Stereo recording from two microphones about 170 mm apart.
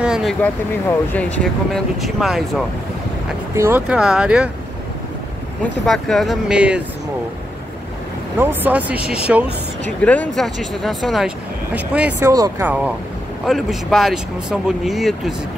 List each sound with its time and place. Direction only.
0.0 s vehicle: 5° right (ahead or behind)
0.4 s speech: 10° left (ahead or behind)
3.5 s speech: 15° right (ahead or behind)
3.8 s speech: 5° right (ahead or behind)
5.6 s speech: centre (ahead or behind)
8.4 s speech: 10° right (ahead or behind)
10.0 s speech: 10° left (ahead or behind); by 12.3 s 10° right (ahead or behind)
12.3 s speech: 20° right (ahead or behind)
12.6 s speech: 10° right (ahead or behind)